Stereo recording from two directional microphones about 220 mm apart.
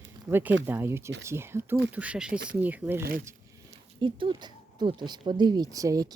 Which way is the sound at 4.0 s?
20° right (ahead or behind).